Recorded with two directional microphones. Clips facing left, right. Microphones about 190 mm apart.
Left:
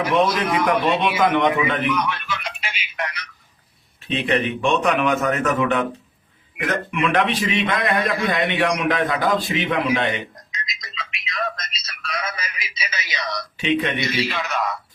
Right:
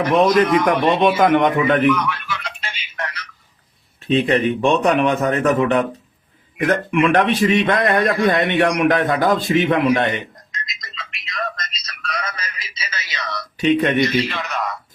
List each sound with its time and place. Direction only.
0.1 s a man's voice: 45° right (ahead or behind)
1.9 s a sound: 20° left (ahead or behind)
4.3 s a man's voice: 35° right (ahead or behind)
6.7 s a man's voice: 55° right (ahead or behind)
10.5 s music: centre (ahead or behind); by 13.4 s 15° left (ahead or behind)
13.6 s a man's voice: 40° right (ahead or behind)
14.3 s speech: centre (ahead or behind)